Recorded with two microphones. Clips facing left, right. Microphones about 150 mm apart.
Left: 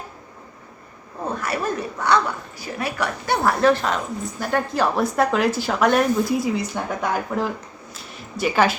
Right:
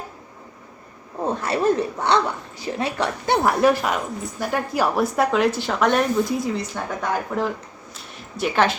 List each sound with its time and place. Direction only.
1.4 s speech: 25° right (ahead or behind); by 8.8 s 5° left (ahead or behind)